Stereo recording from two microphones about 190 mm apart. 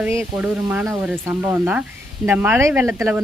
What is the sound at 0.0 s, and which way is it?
Speech, 10° right (ahead or behind).